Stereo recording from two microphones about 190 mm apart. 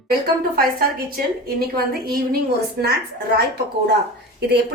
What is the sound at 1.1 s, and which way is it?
A woman's voice, 55° right (ahead or behind).